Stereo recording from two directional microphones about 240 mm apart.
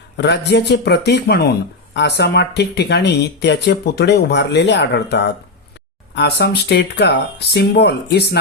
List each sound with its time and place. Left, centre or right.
0.2 s speech: left